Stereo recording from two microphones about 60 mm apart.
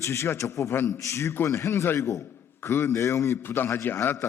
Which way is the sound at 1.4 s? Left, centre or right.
Left.